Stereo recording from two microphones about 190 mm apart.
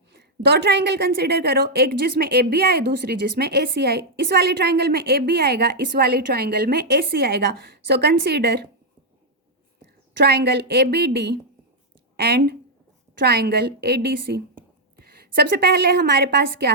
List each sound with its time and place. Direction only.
0.1 s a woman's voice: 60° right (ahead or behind)
10.2 s a woman's voice: 60° right (ahead or behind)